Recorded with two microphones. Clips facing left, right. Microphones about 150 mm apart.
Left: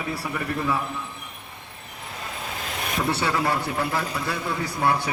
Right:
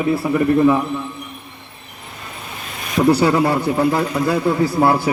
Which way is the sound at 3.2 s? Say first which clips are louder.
Right 9 dB; 25° right (ahead or behind).